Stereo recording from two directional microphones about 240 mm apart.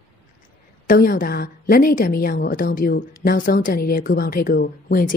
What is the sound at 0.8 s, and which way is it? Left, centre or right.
Speech, left.